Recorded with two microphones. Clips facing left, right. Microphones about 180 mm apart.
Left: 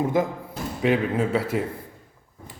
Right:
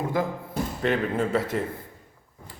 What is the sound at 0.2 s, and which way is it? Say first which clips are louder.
Speech: left 2 dB; 20° left (ahead or behind).